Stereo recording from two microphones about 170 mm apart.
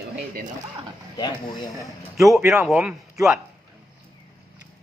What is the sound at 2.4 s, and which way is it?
Speech, 15° right (ahead or behind).